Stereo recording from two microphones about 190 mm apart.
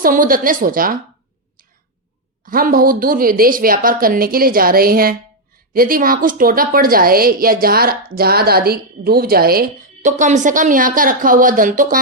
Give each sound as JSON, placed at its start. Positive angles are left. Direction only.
{"t": 0.0, "sound": "a woman's voice", "side_deg": -45}
{"t": 2.4, "sound": "a woman's voice", "side_deg": -45}